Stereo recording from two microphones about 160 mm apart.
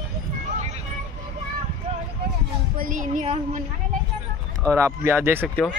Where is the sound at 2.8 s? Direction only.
55° right (ahead or behind).